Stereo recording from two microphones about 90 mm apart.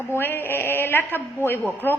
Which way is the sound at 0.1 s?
25° left (ahead or behind).